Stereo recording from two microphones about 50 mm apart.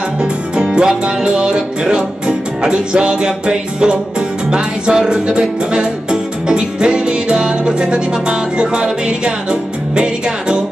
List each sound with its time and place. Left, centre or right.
0.2 s music: centre